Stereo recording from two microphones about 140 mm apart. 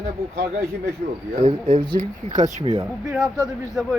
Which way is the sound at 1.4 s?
55° right (ahead or behind).